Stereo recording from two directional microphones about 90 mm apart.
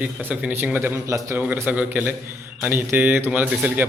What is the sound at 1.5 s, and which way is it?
A man's voice, 20° right (ahead or behind).